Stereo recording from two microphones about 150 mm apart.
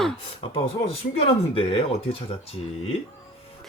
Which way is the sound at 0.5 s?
40° left (ahead or behind).